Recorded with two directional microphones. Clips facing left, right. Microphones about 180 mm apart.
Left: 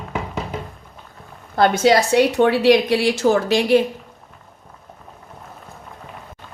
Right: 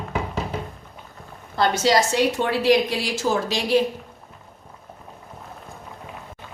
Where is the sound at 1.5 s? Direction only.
55° left (ahead or behind).